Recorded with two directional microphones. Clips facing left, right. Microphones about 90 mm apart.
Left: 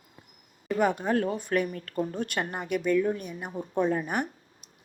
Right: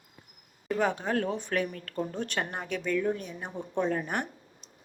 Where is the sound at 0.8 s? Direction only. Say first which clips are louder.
Left 3 dB; 5° left (ahead or behind).